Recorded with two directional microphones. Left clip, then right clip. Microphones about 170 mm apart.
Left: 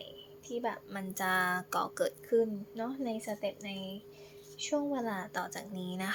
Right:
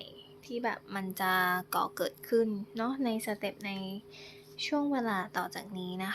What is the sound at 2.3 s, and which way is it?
A woman's voice, 15° right (ahead or behind).